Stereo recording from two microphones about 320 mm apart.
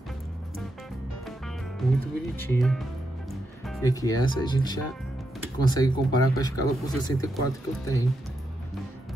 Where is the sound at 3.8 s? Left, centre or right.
Centre.